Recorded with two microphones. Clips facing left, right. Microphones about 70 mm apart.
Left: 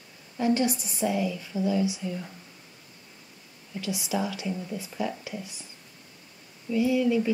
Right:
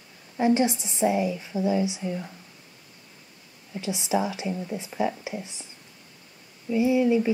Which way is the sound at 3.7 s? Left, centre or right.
Right.